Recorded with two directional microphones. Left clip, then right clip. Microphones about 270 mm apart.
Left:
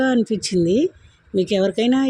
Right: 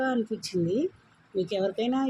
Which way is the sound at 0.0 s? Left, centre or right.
Left.